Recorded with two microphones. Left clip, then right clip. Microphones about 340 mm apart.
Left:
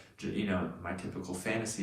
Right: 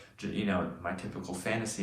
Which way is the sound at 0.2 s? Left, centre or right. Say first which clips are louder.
Right 1 dB; centre.